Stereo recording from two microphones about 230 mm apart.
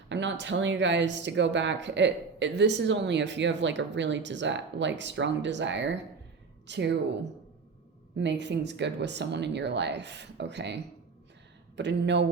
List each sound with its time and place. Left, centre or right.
0.1 s speech: right
8.2 s speech: right
11.8 s speech: right